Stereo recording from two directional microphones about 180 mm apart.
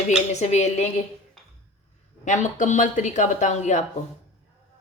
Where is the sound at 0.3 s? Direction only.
40° left (ahead or behind).